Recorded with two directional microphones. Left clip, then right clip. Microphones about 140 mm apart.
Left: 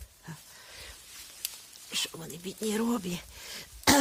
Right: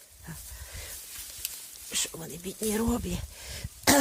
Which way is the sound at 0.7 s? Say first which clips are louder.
Right 3 dB; 20° right (ahead or behind).